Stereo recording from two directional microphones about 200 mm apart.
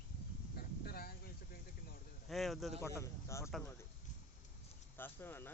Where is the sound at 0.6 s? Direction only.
50° left (ahead or behind).